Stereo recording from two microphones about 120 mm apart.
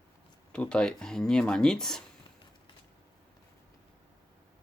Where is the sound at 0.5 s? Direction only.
10° left (ahead or behind).